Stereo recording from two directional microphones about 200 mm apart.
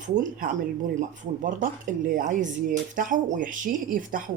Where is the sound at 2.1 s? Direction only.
40° right (ahead or behind).